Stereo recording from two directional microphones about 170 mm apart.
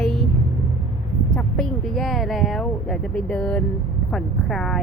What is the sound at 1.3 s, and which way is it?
Speech, 5° left (ahead or behind).